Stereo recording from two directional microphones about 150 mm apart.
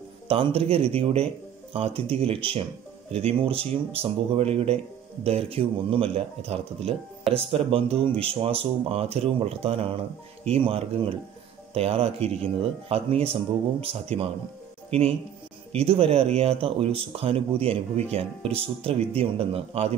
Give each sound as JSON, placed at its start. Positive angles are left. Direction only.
{"t": 0.3, "sound": "speech", "side_deg": -40}